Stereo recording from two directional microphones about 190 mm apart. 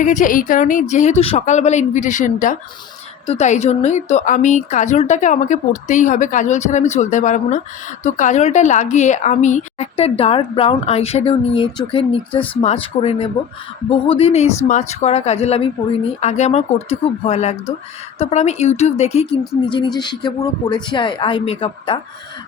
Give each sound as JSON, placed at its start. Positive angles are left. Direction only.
{"t": 0.0, "sound": "a woman's voice", "side_deg": 40}